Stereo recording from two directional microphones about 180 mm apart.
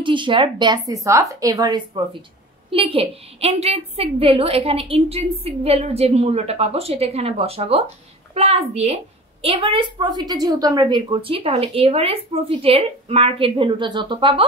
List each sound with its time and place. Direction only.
0.0 s a woman's voice: 25° right (ahead or behind)